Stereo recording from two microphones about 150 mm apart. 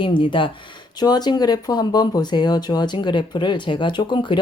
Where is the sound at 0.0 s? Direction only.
35° left (ahead or behind).